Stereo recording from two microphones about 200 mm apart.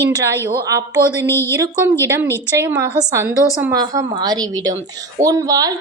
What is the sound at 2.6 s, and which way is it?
Speech, 10° right (ahead or behind).